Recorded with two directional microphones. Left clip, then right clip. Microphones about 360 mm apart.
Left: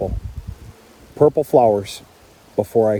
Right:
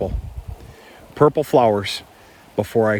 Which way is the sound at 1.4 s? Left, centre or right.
Right.